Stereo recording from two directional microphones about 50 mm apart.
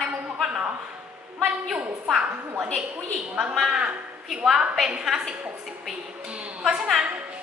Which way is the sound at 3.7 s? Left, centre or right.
Right.